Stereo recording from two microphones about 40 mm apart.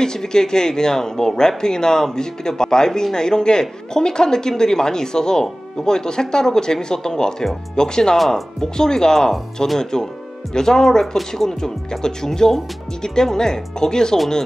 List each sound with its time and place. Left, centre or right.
0.0 s speech: centre
8.2 s speech: centre